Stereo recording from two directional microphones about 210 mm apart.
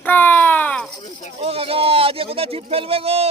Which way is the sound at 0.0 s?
10° left (ahead or behind).